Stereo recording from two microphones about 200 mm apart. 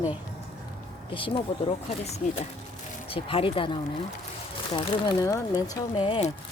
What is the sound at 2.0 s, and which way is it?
Speech, 35° left (ahead or behind).